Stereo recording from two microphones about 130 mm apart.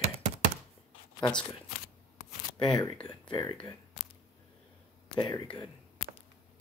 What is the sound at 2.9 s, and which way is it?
Speech, 10° left (ahead or behind).